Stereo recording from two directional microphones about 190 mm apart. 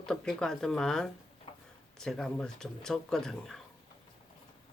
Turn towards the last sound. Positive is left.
turn(degrees=0)  # may be behind; listen again after turning